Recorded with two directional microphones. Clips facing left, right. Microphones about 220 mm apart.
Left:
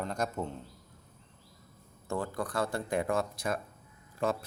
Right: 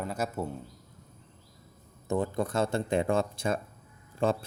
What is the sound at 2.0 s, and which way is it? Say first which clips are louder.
Speech: right 5 dB; 20° right (ahead or behind).